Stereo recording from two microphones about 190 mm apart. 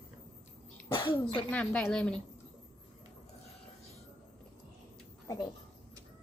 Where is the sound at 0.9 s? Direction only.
25° left (ahead or behind).